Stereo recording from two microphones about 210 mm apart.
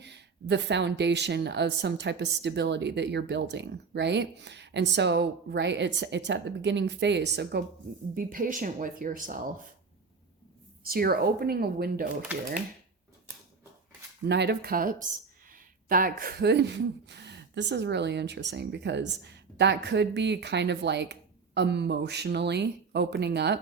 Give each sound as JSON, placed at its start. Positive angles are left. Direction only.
{"t": 0.0, "sound": "speech", "side_deg": -55}
{"t": 8.1, "sound": "speech", "side_deg": -40}
{"t": 10.8, "sound": "speech", "side_deg": -45}
{"t": 14.3, "sound": "speech", "side_deg": -50}